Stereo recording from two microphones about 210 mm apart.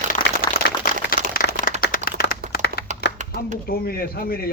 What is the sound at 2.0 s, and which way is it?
Clapping, 45° left (ahead or behind).